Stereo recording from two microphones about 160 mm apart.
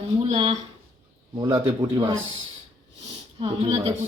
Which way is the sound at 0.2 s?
35° right (ahead or behind).